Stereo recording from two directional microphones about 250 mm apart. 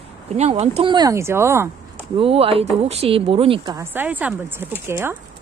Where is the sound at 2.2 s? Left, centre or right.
Right.